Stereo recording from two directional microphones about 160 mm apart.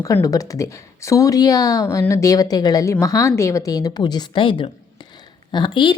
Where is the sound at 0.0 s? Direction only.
20° left (ahead or behind).